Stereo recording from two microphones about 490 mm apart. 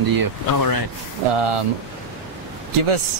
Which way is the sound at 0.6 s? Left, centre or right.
Left.